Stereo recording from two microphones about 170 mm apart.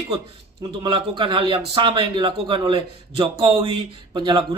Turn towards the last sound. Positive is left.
turn(degrees=-30)  # may be behind; listen again after turning